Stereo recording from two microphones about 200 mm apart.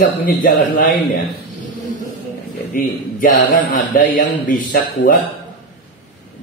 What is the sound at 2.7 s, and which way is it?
A man's voice, 45° left (ahead or behind).